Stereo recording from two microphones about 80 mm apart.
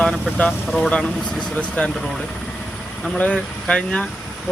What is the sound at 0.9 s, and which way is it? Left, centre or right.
Speech, centre.